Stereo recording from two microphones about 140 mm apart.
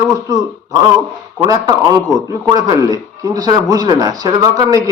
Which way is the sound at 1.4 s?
25° right (ahead or behind).